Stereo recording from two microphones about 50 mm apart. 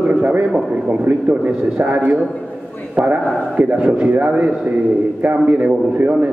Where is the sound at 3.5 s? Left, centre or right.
Right.